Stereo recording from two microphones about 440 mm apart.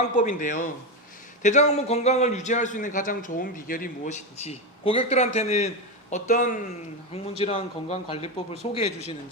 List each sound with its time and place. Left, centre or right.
0.0 s a man's voice: centre